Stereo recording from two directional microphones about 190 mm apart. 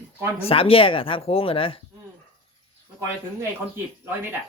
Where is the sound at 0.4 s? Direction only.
30° left (ahead or behind).